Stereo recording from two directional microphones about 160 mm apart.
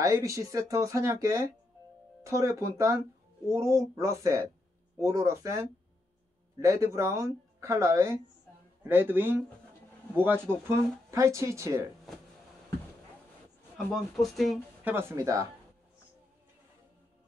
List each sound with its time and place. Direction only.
0.0 s speech: 20° right (ahead or behind)
13.7 s speech: centre (ahead or behind)
14.8 s speech: 15° right (ahead or behind)